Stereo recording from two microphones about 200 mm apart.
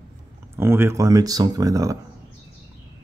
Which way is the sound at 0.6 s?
10° right (ahead or behind).